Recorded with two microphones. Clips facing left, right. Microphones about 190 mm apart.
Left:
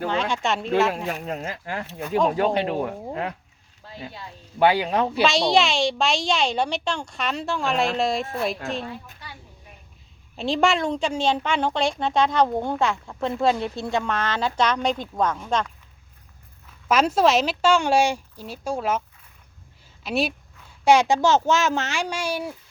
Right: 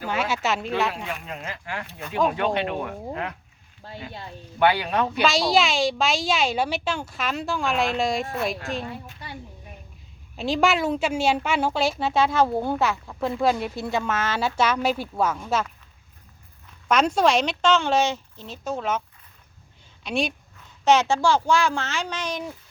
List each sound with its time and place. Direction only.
0.1 s a child's voice: 5° right (ahead or behind)
1.0 s speech: 40° left (ahead or behind)
4.6 s speech: 30° left (ahead or behind)
5.2 s a child's voice: centre (ahead or behind)
10.3 s a child's voice: centre (ahead or behind)
16.9 s speech: 5° left (ahead or behind)
20.1 s a child's voice: 5° left (ahead or behind)